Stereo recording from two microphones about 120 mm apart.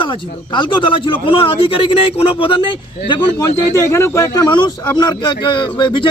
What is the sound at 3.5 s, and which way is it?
A man's voice, 25° left (ahead or behind).